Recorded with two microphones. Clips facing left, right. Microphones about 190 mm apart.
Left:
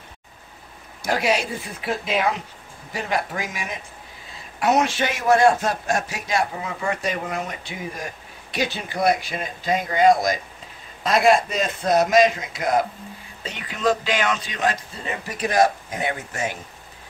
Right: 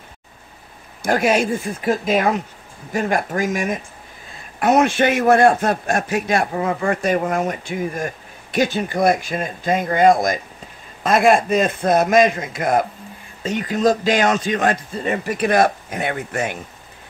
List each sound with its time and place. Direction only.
1.0 s a man's voice: 50° right (ahead or behind)